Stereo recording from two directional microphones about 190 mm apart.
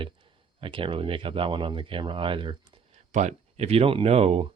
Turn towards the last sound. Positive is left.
turn(degrees=-30)  # may be behind; listen again after turning